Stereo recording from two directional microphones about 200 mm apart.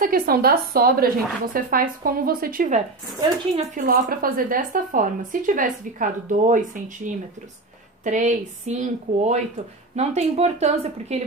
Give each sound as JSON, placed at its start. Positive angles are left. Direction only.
{"t": 0.0, "sound": "a woman's voice", "side_deg": -45}